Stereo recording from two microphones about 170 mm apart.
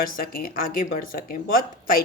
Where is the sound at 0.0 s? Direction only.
55° left (ahead or behind).